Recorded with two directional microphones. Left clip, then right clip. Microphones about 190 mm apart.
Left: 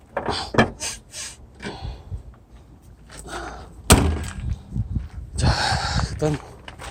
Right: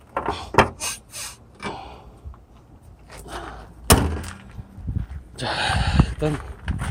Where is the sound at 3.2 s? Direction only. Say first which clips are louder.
Left 2 dB; 10° left (ahead or behind).